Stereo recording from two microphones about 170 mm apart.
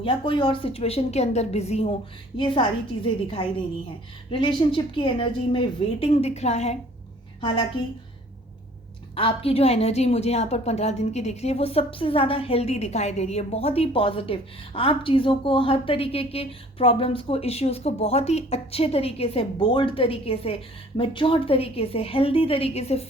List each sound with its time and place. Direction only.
0.0 s a woman's voice: 30° left (ahead or behind)
7.4 s a woman's voice: 30° left (ahead or behind)
9.1 s a woman's voice: 35° left (ahead or behind)